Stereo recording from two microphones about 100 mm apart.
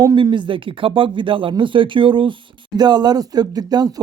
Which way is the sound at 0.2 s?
50° right (ahead or behind).